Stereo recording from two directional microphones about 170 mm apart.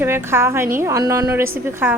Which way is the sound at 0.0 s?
15° right (ahead or behind).